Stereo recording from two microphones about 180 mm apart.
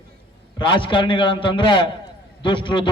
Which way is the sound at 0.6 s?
25° left (ahead or behind).